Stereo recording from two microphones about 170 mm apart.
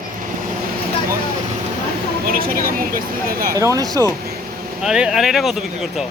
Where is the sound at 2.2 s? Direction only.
55° right (ahead or behind).